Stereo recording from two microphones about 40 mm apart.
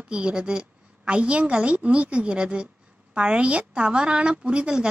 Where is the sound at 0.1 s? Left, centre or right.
Right.